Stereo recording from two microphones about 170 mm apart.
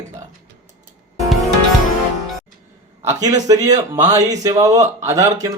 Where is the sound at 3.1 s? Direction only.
20° right (ahead or behind).